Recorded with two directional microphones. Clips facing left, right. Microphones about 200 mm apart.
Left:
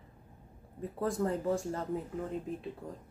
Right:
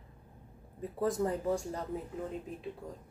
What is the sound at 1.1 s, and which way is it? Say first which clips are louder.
Speech: left 1 dB; 20° right (ahead or behind).